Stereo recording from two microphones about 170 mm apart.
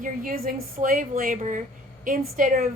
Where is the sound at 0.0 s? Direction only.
55° right (ahead or behind).